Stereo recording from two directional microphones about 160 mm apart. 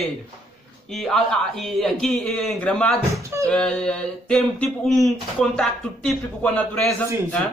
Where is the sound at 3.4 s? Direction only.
5° left (ahead or behind).